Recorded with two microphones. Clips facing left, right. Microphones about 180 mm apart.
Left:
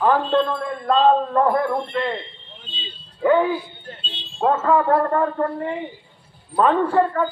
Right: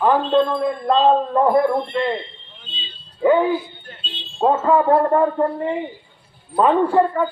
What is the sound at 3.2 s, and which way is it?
Speech, 10° right (ahead or behind).